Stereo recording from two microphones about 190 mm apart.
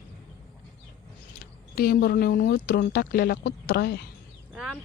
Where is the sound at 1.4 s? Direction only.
50° left (ahead or behind).